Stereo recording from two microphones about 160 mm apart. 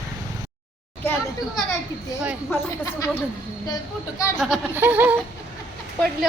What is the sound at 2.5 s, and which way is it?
Speech, 20° left (ahead or behind).